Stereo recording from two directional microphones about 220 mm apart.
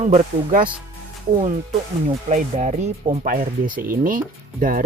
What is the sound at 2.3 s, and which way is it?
Speech, 30° right (ahead or behind).